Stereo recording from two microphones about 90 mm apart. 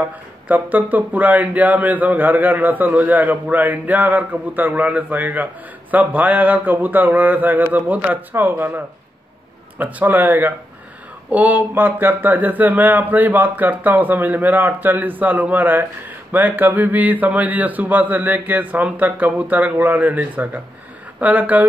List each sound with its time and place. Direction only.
0.5 s speech: 20° right (ahead or behind)